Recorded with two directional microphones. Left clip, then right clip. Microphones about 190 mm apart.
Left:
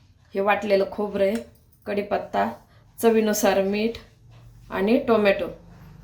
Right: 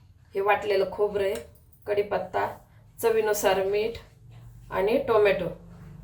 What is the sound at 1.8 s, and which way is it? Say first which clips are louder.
A woman's voice: left 1 dB; 45° left (ahead or behind).